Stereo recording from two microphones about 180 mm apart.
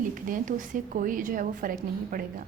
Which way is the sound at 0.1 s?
50° right (ahead or behind).